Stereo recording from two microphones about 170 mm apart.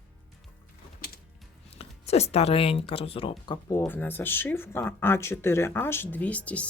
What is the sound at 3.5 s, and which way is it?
Speech, 15° left (ahead or behind).